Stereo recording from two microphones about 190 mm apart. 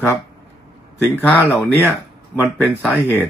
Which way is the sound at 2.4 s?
Centre (ahead or behind).